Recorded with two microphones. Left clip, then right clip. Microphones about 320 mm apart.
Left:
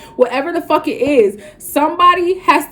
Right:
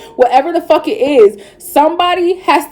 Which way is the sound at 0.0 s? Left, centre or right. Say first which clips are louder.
Right 5 dB; centre.